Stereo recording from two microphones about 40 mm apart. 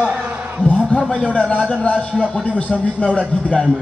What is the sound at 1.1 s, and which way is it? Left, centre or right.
A man's voice, left.